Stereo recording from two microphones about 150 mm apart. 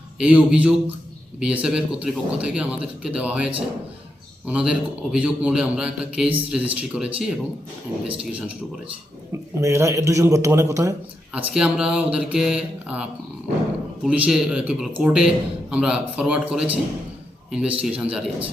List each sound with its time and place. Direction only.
0.2 s a man's voice: 10° right (ahead or behind)
9.6 s a man's voice: 20° right (ahead or behind)
11.3 s a man's voice: 5° right (ahead or behind)